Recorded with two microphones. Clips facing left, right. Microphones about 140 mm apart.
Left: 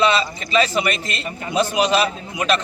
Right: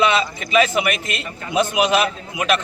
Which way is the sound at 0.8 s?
10° right (ahead or behind).